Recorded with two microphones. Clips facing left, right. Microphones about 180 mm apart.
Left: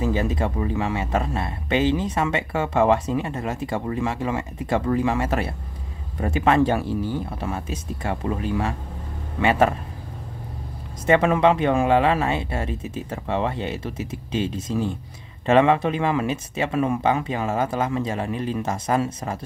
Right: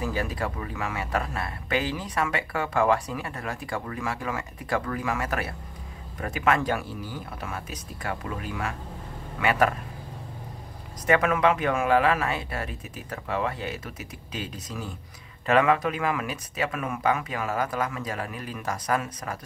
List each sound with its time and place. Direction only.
0.0 s speech: 25° left (ahead or behind)
11.1 s speech: 30° left (ahead or behind)